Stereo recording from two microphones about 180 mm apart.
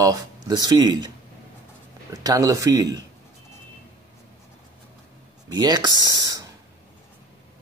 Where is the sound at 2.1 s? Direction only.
20° right (ahead or behind).